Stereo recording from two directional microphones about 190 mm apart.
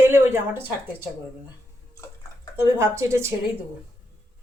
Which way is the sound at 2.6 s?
15° right (ahead or behind).